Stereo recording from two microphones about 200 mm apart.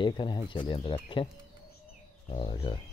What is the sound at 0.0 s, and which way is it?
Speech, 25° left (ahead or behind).